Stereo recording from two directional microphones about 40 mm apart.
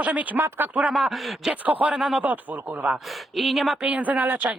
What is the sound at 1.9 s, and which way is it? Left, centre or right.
Speech, centre.